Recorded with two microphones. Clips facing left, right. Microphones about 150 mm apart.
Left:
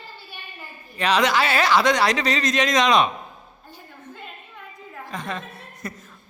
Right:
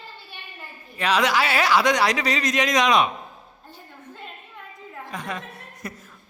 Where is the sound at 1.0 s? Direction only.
5° right (ahead or behind).